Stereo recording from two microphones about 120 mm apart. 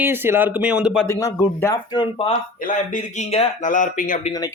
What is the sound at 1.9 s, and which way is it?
Speech, 45° left (ahead or behind).